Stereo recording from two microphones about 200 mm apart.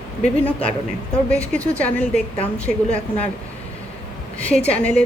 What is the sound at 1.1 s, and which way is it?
A woman's voice, 5° left (ahead or behind).